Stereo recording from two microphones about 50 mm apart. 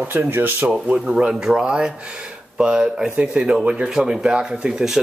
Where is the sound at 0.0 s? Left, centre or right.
Right.